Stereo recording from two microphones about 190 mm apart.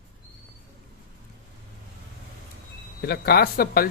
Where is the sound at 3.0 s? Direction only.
55° left (ahead or behind).